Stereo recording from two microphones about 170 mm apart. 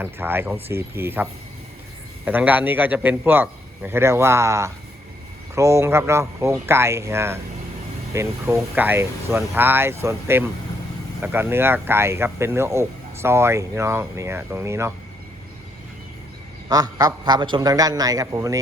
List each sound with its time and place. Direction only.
0.0 s a man's voice: 10° right (ahead or behind)
16.6 s a man's voice: 25° right (ahead or behind)